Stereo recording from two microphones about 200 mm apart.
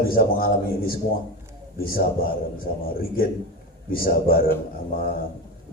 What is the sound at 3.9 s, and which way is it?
Speech, 45° left (ahead or behind).